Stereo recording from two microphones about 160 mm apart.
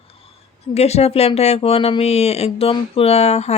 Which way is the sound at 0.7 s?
40° left (ahead or behind).